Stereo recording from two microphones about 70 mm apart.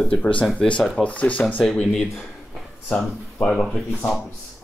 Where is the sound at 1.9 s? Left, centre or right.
Centre.